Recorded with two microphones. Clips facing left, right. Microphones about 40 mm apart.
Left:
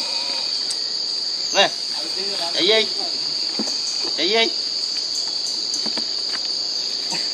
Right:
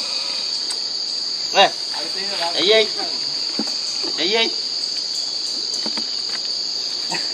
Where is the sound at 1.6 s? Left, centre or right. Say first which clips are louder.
Right 4 dB; centre.